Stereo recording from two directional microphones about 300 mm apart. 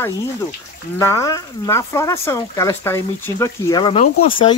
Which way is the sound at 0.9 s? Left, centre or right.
Centre.